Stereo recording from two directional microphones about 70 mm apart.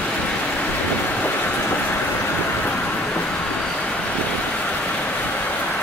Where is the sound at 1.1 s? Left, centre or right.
Left.